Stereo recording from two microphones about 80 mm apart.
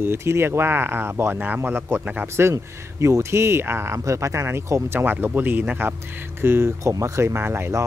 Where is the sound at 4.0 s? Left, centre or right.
Right.